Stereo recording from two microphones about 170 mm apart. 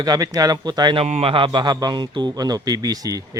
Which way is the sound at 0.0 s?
20° right (ahead or behind).